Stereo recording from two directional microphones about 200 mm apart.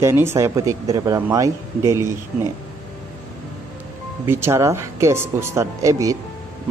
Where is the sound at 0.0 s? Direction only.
10° right (ahead or behind).